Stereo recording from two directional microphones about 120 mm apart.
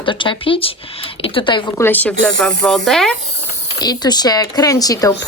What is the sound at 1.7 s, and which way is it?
Speech, 20° left (ahead or behind).